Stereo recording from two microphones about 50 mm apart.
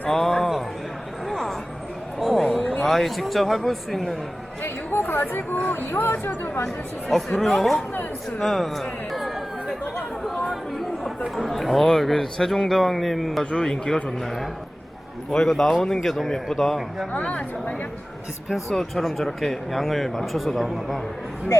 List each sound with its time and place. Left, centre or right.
0.1 s a sound: centre
1.3 s vehicle: centre
2.1 s a sound: centre
2.8 s a man's voice: centre
4.6 s speech: left
7.3 s a man's voice: centre
8.4 s a sound: centre
10.5 s chatter: centre
11.3 s a man's voice: centre
13.4 s speech: left
13.7 s a man's voice: centre
17.1 s speech: left
18.4 s a man's voice: centre